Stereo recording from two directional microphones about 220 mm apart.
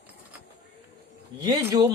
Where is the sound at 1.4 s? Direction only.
15° right (ahead or behind).